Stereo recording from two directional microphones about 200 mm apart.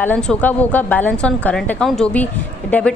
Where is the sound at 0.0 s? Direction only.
5° left (ahead or behind).